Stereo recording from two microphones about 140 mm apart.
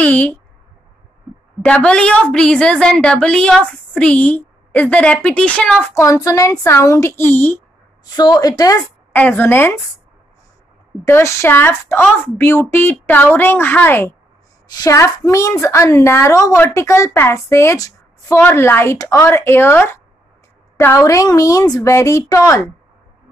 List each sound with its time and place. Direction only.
0.0 s a woman's voice: 10° left (ahead or behind)
1.6 s a woman's voice: 10° left (ahead or behind)
5.9 s a woman's voice: 20° left (ahead or behind)
8.0 s a woman's voice: 30° left (ahead or behind)
9.1 s a woman's voice: 10° left (ahead or behind)
11.1 s a woman's voice: 20° left (ahead or behind)